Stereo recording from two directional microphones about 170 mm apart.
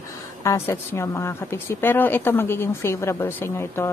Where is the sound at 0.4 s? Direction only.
15° left (ahead or behind).